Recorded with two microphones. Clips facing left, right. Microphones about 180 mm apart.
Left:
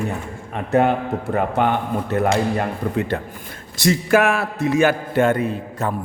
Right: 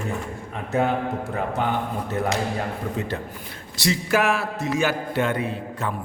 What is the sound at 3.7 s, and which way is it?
A man's voice, 50° left (ahead or behind).